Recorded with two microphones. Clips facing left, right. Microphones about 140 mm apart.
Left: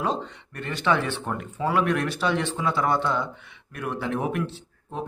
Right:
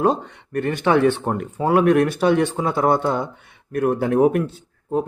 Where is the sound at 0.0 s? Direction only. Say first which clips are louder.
Right 8 dB; 50° right (ahead or behind).